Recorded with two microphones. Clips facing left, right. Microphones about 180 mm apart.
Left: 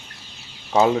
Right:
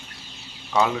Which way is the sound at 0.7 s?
30° left (ahead or behind).